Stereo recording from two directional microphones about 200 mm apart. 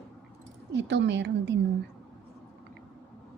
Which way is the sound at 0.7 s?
60° right (ahead or behind).